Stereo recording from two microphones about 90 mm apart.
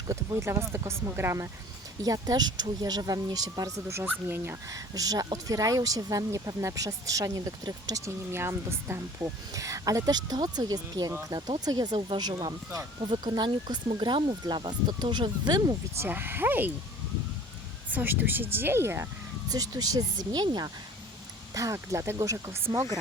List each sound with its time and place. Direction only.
0.1 s speech: 35° right (ahead or behind)
2.0 s speech: 40° right (ahead or behind)
4.0 s speech: 20° right (ahead or behind)
4.7 s speech: 45° right (ahead or behind)
8.3 s speech: 30° right (ahead or behind); by 11.9 s 50° right (ahead or behind)
11.9 s speech: 60° right (ahead or behind)
13.9 s speech: 75° right (ahead or behind)
14.4 s speech: 55° right (ahead or behind)
16.0 s speech: 25° right (ahead or behind)
17.9 s speech: 20° right (ahead or behind)
19.5 s speech: 45° right (ahead or behind)
21.5 s speech: 35° right (ahead or behind)